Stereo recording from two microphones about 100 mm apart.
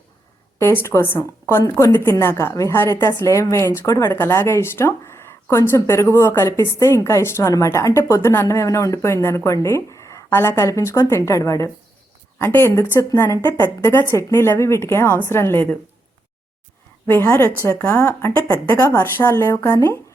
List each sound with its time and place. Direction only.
0.6 s speech: 25° left (ahead or behind)
3.1 s a woman's voice: 35° left (ahead or behind)
17.1 s speech: 20° left (ahead or behind)